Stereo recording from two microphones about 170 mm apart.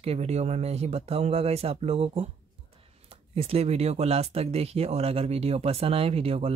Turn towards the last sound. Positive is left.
turn(degrees=-35)  # may be behind; listen again after turning